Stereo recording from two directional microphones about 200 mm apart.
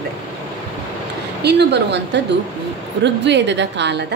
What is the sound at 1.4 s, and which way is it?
A woman's voice, 55° right (ahead or behind).